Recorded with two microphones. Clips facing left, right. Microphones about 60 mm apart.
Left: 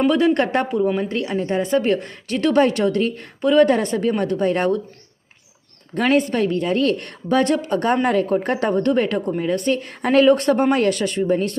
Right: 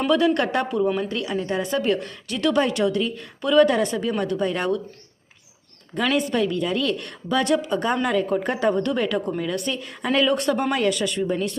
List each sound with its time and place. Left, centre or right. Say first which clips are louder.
0.1 s a woman's voice: left 2 dB; left
0.8 s a woman's voice: left 1 dB; centre
1.0 s a woman's voice: left 3 dB; left
5.9 s a woman's voice: left 4 dB; left
8.8 s a woman's voice: left 4 dB; left